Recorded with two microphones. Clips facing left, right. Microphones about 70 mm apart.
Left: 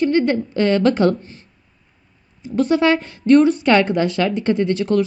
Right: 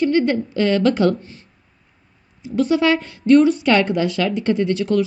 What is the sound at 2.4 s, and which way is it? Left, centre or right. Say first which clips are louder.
A woman's voice: left 1 dB; left.